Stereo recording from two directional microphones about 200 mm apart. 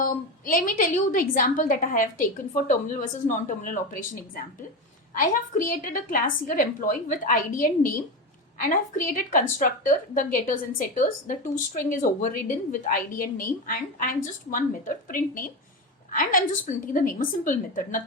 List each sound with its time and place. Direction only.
0.0 s a woman's voice: 40° left (ahead or behind)